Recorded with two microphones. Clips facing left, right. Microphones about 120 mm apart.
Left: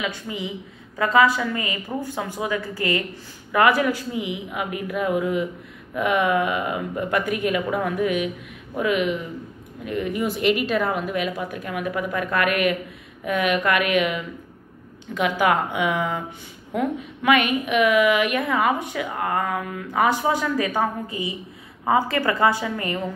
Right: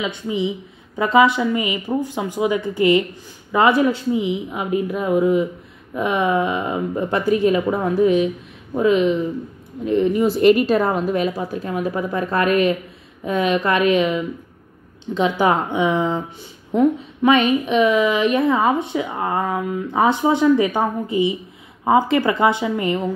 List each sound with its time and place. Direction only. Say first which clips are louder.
0.0 s a woman's voice: right 6 dB; 20° right (ahead or behind)